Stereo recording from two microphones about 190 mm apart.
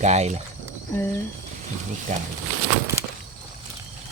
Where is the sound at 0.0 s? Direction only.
35° right (ahead or behind).